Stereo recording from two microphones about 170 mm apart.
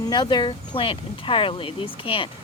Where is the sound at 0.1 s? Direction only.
25° left (ahead or behind).